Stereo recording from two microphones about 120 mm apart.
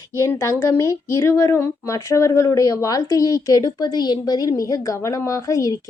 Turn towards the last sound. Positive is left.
turn(degrees=30)  # may be behind; listen again after turning